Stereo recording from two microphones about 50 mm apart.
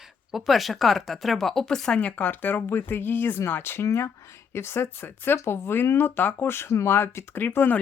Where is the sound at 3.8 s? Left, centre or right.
Left.